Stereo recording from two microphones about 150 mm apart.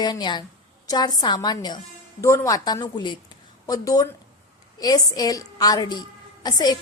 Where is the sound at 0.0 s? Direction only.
30° left (ahead or behind).